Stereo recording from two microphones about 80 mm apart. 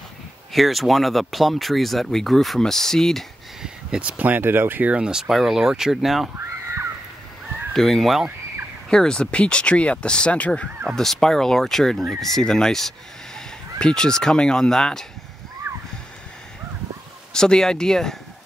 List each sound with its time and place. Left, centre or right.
0.5 s speech: centre
3.6 s speech: centre
4.2 s speech: right; by 6.3 s centre
7.7 s speech: centre
15.7 s splash: right
17.3 s speech: centre